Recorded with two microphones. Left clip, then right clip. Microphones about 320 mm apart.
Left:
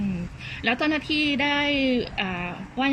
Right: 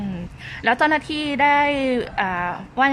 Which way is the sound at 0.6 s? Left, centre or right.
Right.